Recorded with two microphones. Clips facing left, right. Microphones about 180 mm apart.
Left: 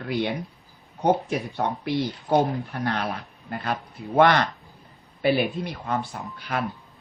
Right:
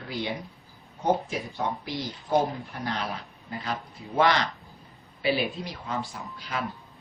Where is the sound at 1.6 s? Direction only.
55° left (ahead or behind).